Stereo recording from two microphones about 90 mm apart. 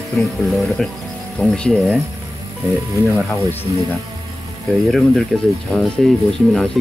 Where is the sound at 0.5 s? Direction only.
Centre (ahead or behind).